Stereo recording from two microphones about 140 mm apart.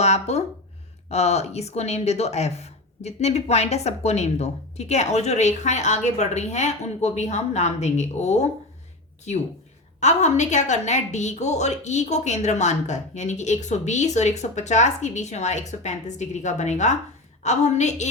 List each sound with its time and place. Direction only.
0.0 s speech: 50° left (ahead or behind)
10.0 s a woman's voice: 55° left (ahead or behind)